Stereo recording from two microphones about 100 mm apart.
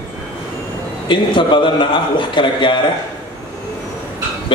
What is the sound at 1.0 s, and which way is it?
A man's voice, 55° left (ahead or behind).